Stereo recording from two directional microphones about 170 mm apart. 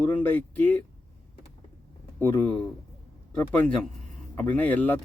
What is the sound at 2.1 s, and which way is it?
Speech, 15° left (ahead or behind).